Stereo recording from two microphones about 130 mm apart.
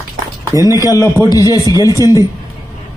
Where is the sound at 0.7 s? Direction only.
30° left (ahead or behind).